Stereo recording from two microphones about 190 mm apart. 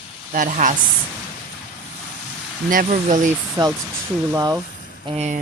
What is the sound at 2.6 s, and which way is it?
Speech, 40° right (ahead or behind).